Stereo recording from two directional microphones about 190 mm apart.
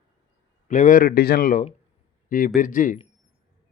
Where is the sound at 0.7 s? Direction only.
45° left (ahead or behind).